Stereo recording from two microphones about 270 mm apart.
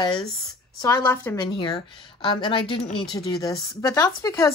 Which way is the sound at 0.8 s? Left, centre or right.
Centre.